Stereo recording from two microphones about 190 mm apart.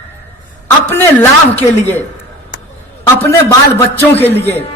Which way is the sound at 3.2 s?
15° left (ahead or behind).